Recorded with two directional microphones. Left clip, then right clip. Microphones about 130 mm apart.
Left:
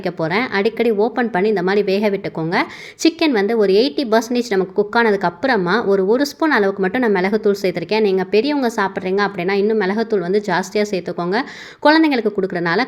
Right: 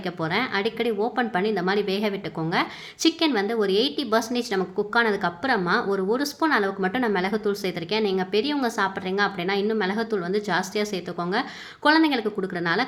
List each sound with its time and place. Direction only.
0.0 s a woman's voice: 30° left (ahead or behind)